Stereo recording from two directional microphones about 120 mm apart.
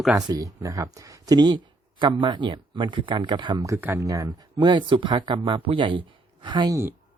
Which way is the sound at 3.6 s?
20° right (ahead or behind).